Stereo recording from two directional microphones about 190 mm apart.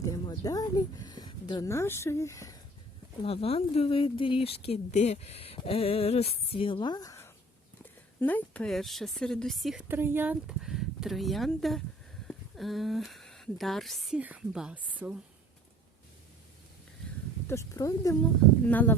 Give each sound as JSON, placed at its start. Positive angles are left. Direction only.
{"t": 0.0, "sound": "speech", "side_deg": 20}
{"t": 3.2, "sound": "speech", "side_deg": 30}
{"t": 9.9, "sound": "speech", "side_deg": -10}
{"t": 17.5, "sound": "speech", "side_deg": 15}